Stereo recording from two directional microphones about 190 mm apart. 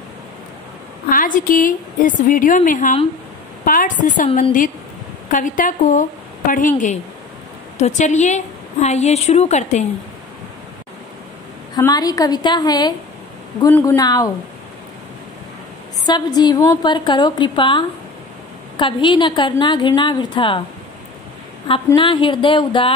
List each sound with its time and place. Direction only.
1.0 s a woman's voice: 45° left (ahead or behind)
7.8 s a woman's voice: 40° left (ahead or behind)
11.7 s a woman's voice: 20° left (ahead or behind)
16.1 s a woman's voice: 20° left (ahead or behind)
21.9 s a woman's voice: 25° left (ahead or behind)